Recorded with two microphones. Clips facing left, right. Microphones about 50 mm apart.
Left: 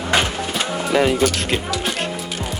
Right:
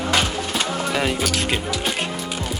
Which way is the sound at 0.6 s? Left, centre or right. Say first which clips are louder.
Left 5 dB; centre.